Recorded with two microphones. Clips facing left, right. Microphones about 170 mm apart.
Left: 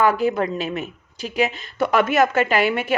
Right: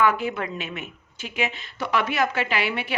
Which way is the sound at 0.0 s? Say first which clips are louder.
Left 4 dB; 40° left (ahead or behind).